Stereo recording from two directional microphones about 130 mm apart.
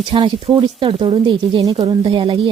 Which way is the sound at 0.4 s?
50° right (ahead or behind).